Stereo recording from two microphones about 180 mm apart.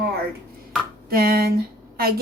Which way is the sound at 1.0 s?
55° right (ahead or behind).